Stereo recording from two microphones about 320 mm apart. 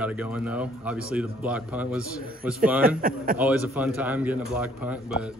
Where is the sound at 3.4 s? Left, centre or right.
Centre.